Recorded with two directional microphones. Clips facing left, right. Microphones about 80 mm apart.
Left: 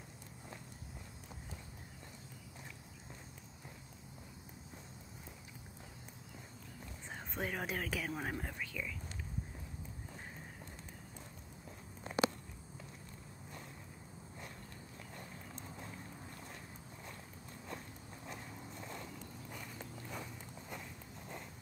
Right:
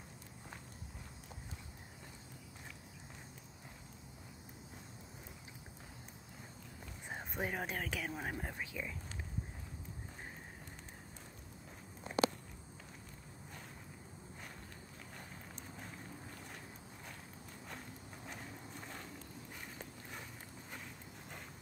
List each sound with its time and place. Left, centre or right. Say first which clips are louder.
7.3 s speech: left 1 dB; centre
8.5 s speech: even; right